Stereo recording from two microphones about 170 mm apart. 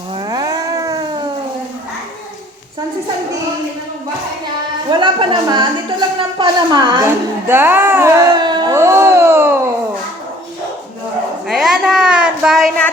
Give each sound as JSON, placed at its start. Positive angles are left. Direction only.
{"t": 0.1, "sound": "cat", "side_deg": -25}
{"t": 4.9, "sound": "a woman's voice", "side_deg": -25}
{"t": 11.4, "sound": "a woman's voice", "side_deg": 0}